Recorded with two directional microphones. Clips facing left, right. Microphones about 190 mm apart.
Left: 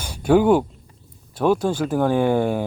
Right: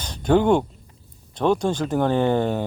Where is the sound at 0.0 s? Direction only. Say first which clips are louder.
Left 2 dB; 10° left (ahead or behind).